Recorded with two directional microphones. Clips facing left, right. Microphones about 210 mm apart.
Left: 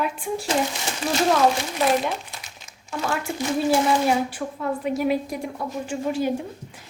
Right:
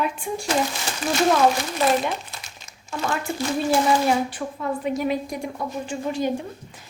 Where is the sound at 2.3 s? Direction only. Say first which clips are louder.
Even; 15° left (ahead or behind).